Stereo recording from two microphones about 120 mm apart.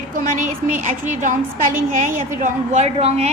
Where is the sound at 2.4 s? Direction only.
85° right; by 3.3 s 60° right (ahead or behind).